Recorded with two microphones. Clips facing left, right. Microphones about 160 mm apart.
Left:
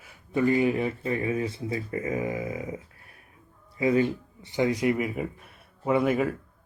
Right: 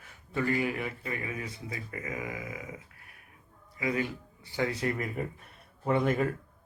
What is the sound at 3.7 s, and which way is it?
Speech, 30° left (ahead or behind).